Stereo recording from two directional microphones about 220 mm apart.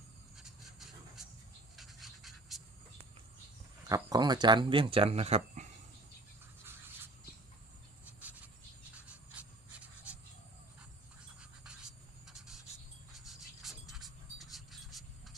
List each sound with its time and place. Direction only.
0.4 s pant: centre (ahead or behind)
1.7 s scratch: centre (ahead or behind)
3.8 s speech: 15° right (ahead or behind)
9.0 s writing: 5° right (ahead or behind)
11.3 s scratch: 5° right (ahead or behind)
13.2 s a sound: centre (ahead or behind)